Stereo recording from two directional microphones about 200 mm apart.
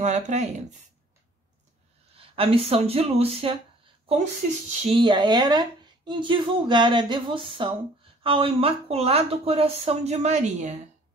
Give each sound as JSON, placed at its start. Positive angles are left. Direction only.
{"t": 0.0, "sound": "speech", "side_deg": -35}
{"t": 2.1, "sound": "speech", "side_deg": -25}
{"t": 4.8, "sound": "speech", "side_deg": -25}